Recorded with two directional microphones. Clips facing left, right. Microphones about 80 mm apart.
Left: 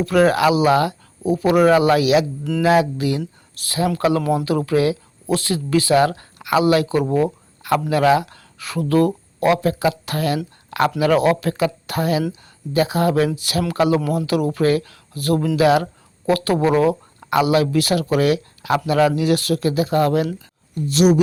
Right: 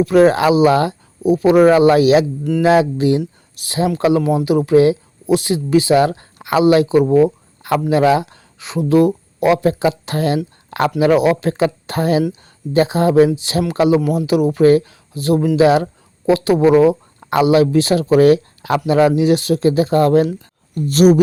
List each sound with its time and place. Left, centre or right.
0.0 s speech: right